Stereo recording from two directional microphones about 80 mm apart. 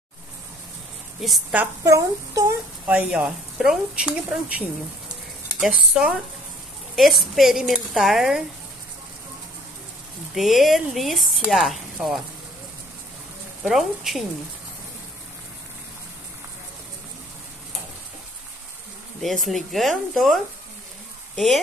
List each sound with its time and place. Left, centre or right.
1.2 s speech: centre
1.8 s a child's voice: right
2.9 s speech: centre
5.7 s speech: centre
7.0 s speech: centre
10.3 s speech: centre
13.7 s speech: centre
19.2 s speech: centre